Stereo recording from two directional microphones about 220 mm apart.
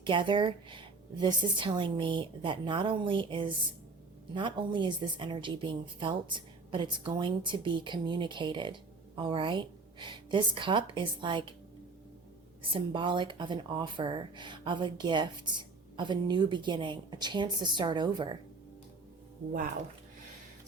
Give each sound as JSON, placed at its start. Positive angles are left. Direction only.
{"t": 0.0, "sound": "a woman's voice", "side_deg": -20}
{"t": 12.7, "sound": "a woman's voice", "side_deg": -20}